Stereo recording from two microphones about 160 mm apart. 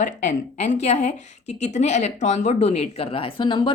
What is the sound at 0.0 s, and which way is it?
A woman's voice, 50° left (ahead or behind).